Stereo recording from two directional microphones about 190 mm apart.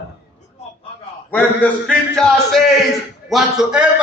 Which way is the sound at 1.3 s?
10° left (ahead or behind).